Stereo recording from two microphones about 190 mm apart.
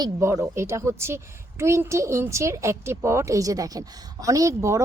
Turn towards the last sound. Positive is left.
turn(degrees=-15)  # may be behind; listen again after turning